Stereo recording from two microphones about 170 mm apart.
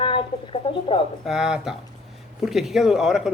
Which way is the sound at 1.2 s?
5° right (ahead or behind).